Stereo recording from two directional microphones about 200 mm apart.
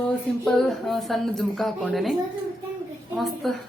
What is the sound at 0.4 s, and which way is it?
Speech, centre (ahead or behind).